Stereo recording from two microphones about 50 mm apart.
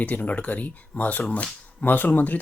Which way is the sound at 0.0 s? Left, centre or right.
Left.